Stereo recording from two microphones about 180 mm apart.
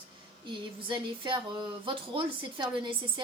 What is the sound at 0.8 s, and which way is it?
A woman's voice, 30° right (ahead or behind).